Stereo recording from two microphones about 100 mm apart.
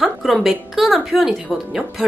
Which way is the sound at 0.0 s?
Centre (ahead or behind).